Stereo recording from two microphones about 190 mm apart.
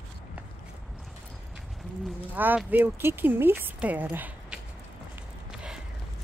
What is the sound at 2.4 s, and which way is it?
Speech, 10° right (ahead or behind).